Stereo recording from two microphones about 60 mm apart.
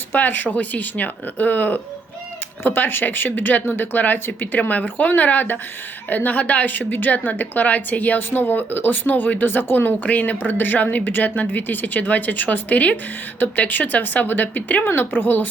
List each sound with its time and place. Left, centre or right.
0.1 s a woman's voice: left